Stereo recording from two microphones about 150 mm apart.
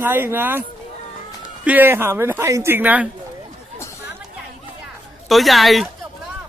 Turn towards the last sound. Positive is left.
turn(degrees=0)  # may be behind; listen again after turning